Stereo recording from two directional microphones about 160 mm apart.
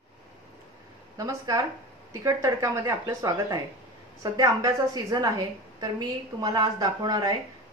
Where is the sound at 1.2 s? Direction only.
20° right (ahead or behind).